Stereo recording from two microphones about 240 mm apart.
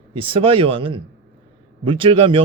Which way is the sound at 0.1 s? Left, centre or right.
Right.